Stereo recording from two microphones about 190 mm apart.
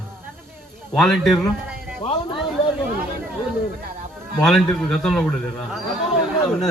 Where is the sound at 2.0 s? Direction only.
30° left (ahead or behind).